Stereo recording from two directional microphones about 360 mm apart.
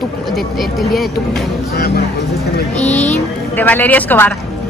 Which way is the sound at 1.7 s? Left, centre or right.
Left.